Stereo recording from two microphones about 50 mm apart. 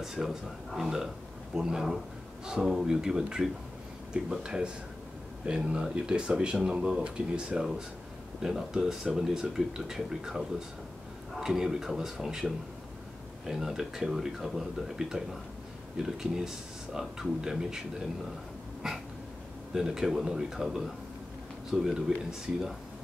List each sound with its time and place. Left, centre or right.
0.0 s speech: centre
18.8 s speech: centre
21.9 s speech: centre